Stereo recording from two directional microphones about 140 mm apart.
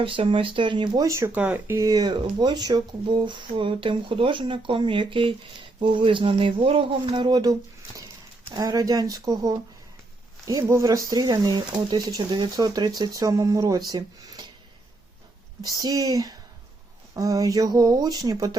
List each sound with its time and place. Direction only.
0.0 s speech: 40° right (ahead or behind)
1.0 s speech: 20° right (ahead or behind)
8.5 s speech: 25° right (ahead or behind)
15.6 s speech: 25° right (ahead or behind)